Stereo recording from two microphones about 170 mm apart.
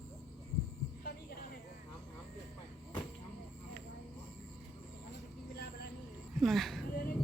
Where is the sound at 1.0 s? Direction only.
60° left (ahead or behind).